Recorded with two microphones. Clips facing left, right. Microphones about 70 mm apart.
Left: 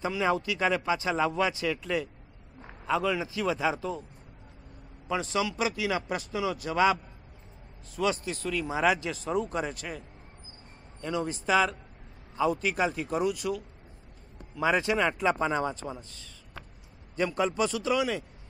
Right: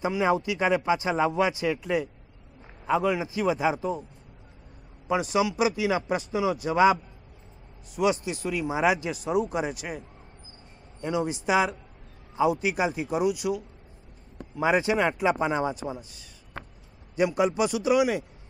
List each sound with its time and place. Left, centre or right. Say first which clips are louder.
0.0 s speech: right 3 dB; centre
5.0 s speech: right 5 dB; centre
16.6 s a sound: right 6 dB; right
17.1 s speech: right 4 dB; centre